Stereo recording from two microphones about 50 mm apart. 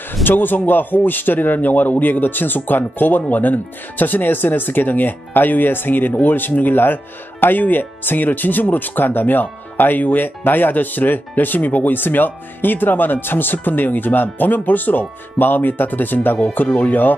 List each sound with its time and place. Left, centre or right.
0.1 s speech: left